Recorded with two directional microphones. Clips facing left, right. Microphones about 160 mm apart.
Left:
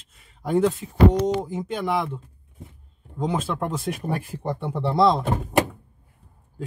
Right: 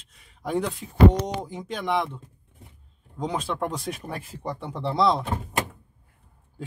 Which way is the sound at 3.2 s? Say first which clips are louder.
Left 2 dB; 5° left (ahead or behind).